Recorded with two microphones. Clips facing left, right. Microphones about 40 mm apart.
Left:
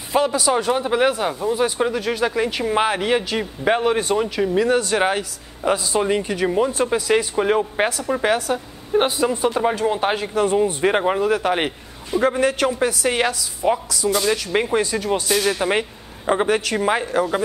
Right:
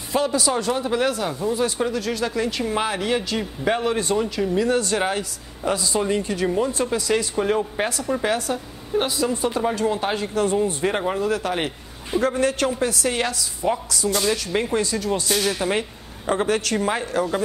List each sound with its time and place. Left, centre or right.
0.1 s speech: centre
8.9 s speech: left
9.3 s speech: centre